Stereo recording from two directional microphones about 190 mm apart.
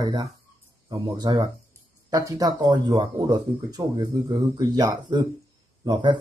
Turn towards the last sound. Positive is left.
turn(degrees=-25)  # may be behind; listen again after turning